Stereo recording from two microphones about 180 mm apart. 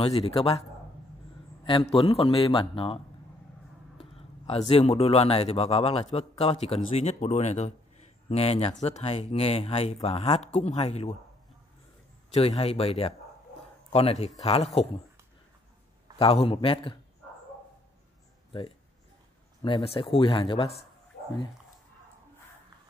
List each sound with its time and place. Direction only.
0.0 s a man's voice: 35° left (ahead or behind)
4.0 s speech: 35° left (ahead or behind)
12.3 s speech: 35° left (ahead or behind)
16.2 s speech: 30° left (ahead or behind)
18.5 s speech: 30° left (ahead or behind)